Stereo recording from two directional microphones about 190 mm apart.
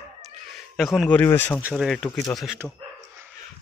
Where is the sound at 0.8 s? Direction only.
Centre (ahead or behind).